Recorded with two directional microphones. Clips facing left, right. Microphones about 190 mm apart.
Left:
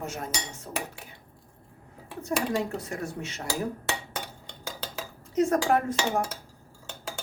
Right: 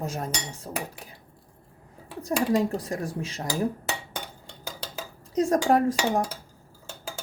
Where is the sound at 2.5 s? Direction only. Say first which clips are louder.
Right 5 dB; 35° right (ahead or behind).